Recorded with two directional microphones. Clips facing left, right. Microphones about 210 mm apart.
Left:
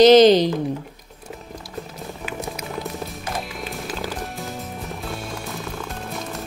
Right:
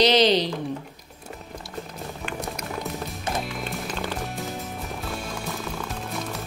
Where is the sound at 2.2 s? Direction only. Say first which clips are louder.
Left 2 dB; centre (ahead or behind).